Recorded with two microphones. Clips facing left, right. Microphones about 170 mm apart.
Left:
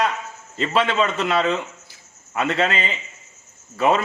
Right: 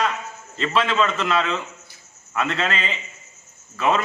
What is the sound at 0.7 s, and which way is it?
Speech, 30° left (ahead or behind).